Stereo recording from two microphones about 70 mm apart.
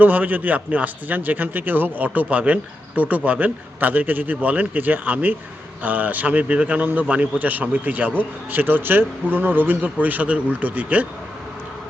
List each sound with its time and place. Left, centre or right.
0.0 s a man's voice: right